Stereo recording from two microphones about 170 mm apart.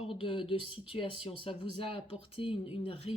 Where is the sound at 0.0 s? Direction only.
30° left (ahead or behind).